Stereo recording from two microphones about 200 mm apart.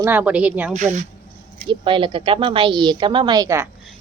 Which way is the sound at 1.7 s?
25° right (ahead or behind).